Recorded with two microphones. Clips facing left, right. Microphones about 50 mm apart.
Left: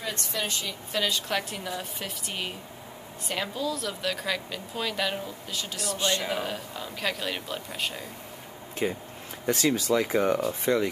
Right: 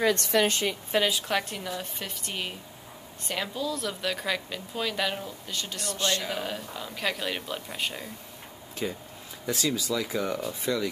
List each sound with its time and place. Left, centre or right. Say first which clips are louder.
0.1 s speech: right 8 dB; right
1.1 s a woman's voice: right 1 dB; centre
8.8 s speech: left 4 dB; left
9.5 s speech: left 4 dB; left